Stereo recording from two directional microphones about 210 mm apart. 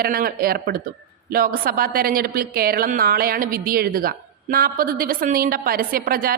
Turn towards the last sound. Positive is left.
turn(degrees=-45)  # may be behind; listen again after turning